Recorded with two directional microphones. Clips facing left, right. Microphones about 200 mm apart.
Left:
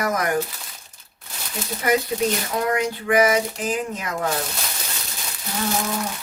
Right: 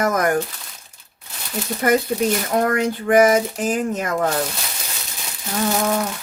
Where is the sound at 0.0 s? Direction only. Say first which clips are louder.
Right 4 dB; 50° right (ahead or behind).